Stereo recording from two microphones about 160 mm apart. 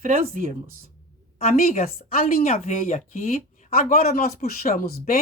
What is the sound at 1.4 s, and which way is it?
Speech, 50° left (ahead or behind).